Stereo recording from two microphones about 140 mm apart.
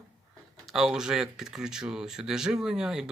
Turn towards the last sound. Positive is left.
turn(degrees=-5)  # may be behind; listen again after turning